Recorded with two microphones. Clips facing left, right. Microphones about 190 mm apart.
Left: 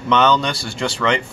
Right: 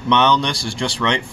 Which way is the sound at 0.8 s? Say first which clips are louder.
Left 2 dB; centre (ahead or behind).